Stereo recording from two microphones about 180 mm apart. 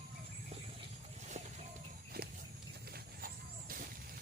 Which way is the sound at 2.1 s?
60° right (ahead or behind).